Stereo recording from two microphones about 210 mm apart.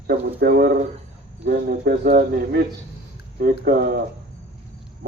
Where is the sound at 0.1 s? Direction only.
50° right (ahead or behind).